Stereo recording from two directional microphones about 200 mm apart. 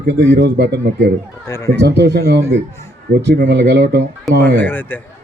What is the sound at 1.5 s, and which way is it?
Speech, 15° left (ahead or behind).